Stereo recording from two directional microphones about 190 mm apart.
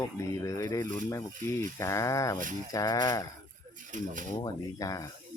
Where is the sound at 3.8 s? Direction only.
40° right (ahead or behind).